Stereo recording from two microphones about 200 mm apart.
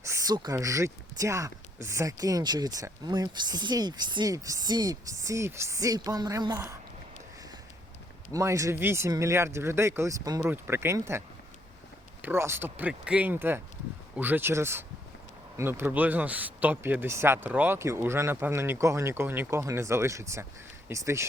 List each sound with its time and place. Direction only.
0.0 s speech: 15° right (ahead or behind)
8.3 s speech: 15° right (ahead or behind)
12.2 s speech: 10° right (ahead or behind)